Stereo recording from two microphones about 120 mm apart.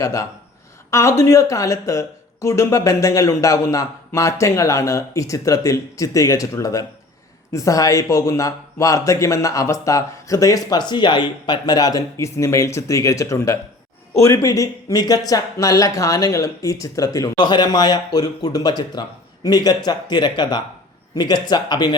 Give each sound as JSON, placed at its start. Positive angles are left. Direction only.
{"t": 0.0, "sound": "speech", "side_deg": 25}